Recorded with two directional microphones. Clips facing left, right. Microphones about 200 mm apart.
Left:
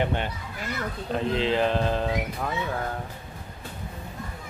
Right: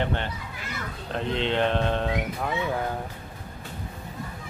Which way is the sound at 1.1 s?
Centre (ahead or behind).